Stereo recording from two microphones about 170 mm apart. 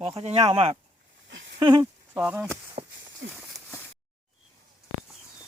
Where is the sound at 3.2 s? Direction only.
90° right.